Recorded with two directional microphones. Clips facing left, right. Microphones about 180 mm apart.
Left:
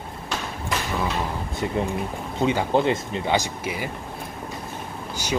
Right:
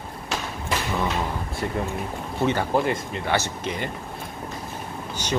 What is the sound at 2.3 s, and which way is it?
Speech, 15° left (ahead or behind).